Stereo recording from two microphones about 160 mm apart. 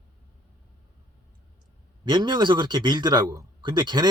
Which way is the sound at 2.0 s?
30° right (ahead or behind).